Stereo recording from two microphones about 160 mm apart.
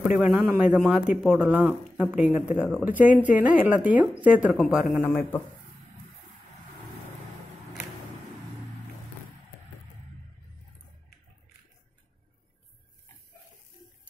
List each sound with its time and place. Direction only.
0.1 s speech: 10° right (ahead or behind)
5.0 s speech: 10° left (ahead or behind)